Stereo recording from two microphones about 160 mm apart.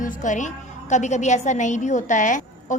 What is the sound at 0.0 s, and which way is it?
A woman's voice, 55° left (ahead or behind).